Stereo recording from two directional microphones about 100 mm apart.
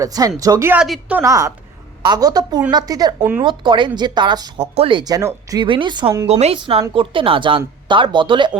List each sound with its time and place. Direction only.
0.0 s speech: 35° right (ahead or behind)
2.0 s speech: 45° right (ahead or behind)
3.2 s speech: 20° right (ahead or behind)
3.4 s speech: 55° right (ahead or behind)
4.6 s speech: 75° right (ahead or behind)
4.9 s speech: 40° right (ahead or behind)
5.5 s speech: 55° right (ahead or behind)
6.2 s a woman's voice: 85° right
6.9 s speech: 60° right (ahead or behind)